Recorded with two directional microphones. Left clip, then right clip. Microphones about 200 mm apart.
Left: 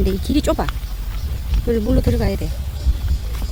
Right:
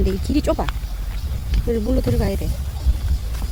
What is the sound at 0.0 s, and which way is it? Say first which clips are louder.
Speech: left 2 dB; 10° left (ahead or behind).